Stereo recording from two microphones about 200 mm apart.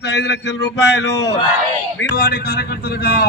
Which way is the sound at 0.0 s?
60° left (ahead or behind).